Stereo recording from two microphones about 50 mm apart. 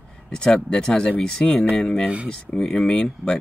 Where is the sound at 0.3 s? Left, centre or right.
Centre.